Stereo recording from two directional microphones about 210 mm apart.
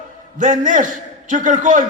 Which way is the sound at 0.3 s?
40° right (ahead or behind).